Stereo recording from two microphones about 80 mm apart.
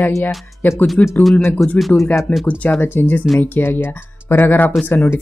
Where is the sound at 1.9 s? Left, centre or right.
Centre.